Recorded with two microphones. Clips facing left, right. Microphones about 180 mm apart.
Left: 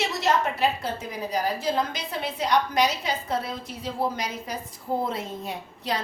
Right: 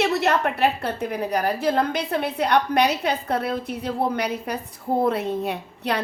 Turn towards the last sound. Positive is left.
turn(degrees=-65)  # may be behind; listen again after turning